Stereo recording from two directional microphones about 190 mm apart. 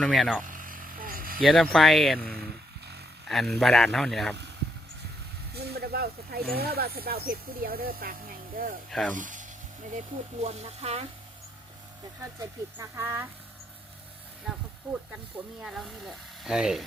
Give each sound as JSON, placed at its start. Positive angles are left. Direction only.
{"t": 0.0, "sound": "speech", "side_deg": 0}
{"t": 0.4, "sound": "vehicle", "side_deg": -45}
{"t": 1.4, "sound": "speech", "side_deg": 0}
{"t": 5.5, "sound": "speech", "side_deg": -55}
{"t": 8.9, "sound": "speech", "side_deg": 0}
{"t": 9.1, "sound": "speech", "side_deg": -45}
{"t": 12.4, "sound": "speech", "side_deg": -15}
{"t": 15.6, "sound": "speech", "side_deg": 0}